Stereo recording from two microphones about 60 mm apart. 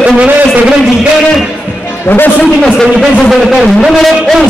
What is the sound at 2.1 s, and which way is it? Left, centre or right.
Speech, left.